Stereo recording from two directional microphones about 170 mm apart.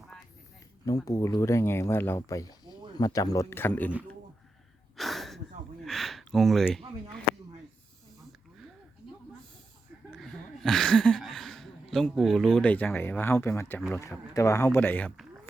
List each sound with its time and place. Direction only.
0.9 s speech: 20° left (ahead or behind)
4.9 s a sound: centre (ahead or behind)
10.1 s speech: centre (ahead or behind)